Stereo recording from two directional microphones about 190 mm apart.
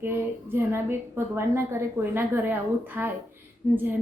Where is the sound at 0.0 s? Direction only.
10° right (ahead or behind).